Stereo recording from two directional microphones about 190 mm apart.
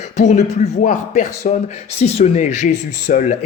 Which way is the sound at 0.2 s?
40° left (ahead or behind).